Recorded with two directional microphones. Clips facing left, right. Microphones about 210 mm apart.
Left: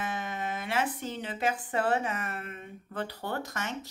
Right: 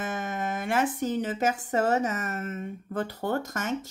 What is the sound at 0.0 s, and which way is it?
Speech, 50° right (ahead or behind).